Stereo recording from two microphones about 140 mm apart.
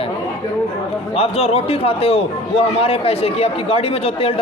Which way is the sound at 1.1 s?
45° left (ahead or behind).